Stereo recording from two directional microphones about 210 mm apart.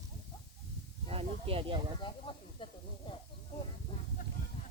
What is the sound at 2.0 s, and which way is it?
Speech, 25° left (ahead or behind).